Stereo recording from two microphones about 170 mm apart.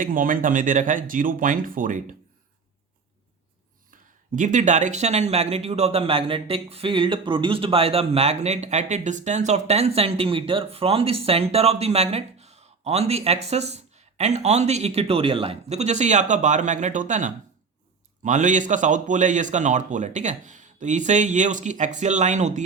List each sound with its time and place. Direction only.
0.0 s a man's voice: 55° right (ahead or behind)
4.4 s a man's voice: 45° right (ahead or behind)